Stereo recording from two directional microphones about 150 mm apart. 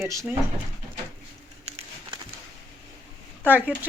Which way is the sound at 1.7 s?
45° right (ahead or behind).